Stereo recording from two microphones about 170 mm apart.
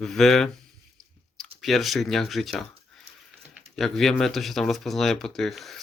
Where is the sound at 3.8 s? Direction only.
Centre (ahead or behind).